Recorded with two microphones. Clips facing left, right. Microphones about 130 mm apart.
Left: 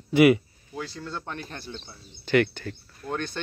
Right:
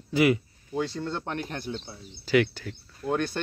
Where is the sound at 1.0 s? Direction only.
20° right (ahead or behind).